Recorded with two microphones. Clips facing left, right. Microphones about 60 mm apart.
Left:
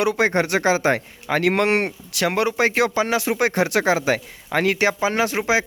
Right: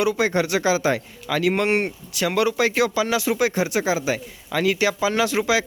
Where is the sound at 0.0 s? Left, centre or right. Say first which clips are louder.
Left 1 dB; left.